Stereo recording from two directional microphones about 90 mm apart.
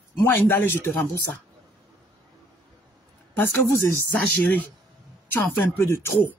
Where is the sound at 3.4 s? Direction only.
30° left (ahead or behind).